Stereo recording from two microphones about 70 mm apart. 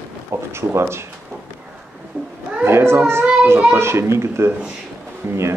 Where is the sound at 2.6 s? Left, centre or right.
Right.